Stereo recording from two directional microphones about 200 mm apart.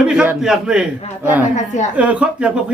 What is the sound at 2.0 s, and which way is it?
Speech, 5° right (ahead or behind).